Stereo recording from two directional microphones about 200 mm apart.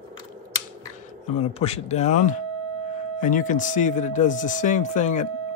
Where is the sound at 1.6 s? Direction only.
30° left (ahead or behind).